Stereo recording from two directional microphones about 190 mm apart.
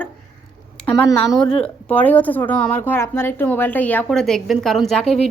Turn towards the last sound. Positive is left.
turn(degrees=0)  # may be behind; listen again after turning